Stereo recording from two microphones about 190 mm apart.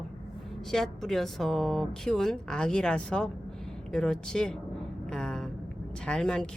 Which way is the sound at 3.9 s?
5° left (ahead or behind).